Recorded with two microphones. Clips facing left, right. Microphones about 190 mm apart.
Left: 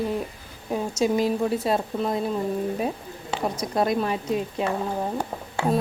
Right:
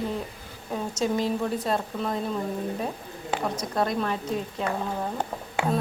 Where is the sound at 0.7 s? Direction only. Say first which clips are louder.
Left 4 dB; 15° left (ahead or behind).